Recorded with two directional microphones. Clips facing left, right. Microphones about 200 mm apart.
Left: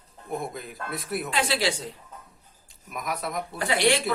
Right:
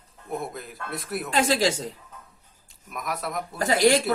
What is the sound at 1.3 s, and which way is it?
Speech, 45° right (ahead or behind).